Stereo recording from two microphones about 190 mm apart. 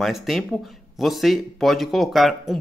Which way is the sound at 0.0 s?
Centre (ahead or behind).